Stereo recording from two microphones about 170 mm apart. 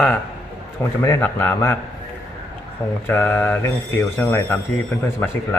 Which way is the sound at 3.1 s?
10° left (ahead or behind).